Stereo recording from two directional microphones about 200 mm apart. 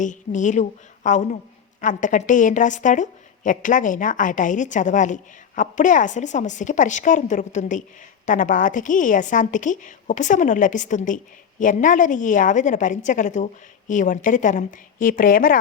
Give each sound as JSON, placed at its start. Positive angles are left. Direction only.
{"t": 0.0, "sound": "a woman's voice", "side_deg": 40}